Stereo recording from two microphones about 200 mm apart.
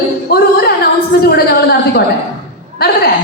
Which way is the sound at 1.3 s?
50° left (ahead or behind).